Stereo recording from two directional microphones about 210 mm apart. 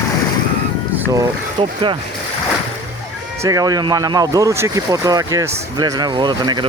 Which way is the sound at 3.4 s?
15° right (ahead or behind).